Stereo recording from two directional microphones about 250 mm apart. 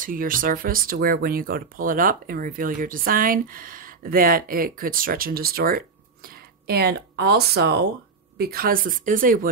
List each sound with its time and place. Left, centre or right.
0.0 s speech: right